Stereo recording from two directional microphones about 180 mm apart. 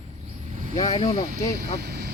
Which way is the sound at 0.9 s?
35° left (ahead or behind).